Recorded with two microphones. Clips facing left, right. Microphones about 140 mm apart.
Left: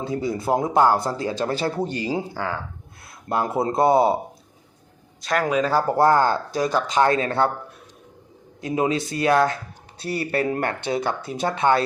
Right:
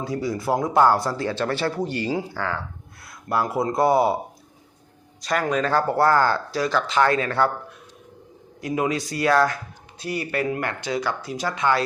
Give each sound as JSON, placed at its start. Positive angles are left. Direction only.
{"t": 0.0, "sound": "speech", "side_deg": 20}
{"t": 5.2, "sound": "speech", "side_deg": 0}
{"t": 8.6, "sound": "speech", "side_deg": 25}